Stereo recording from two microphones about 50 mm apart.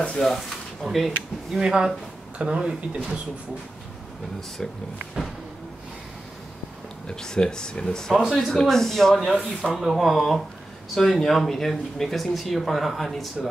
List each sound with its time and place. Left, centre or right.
0.2 s speech: centre
0.8 s speech: centre
7.1 s speech: centre
8.2 s speech: centre
8.5 s speech: centre
9.2 s speech: centre